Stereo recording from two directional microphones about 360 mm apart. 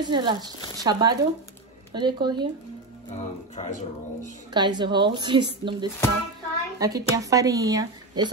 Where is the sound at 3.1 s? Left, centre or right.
Centre.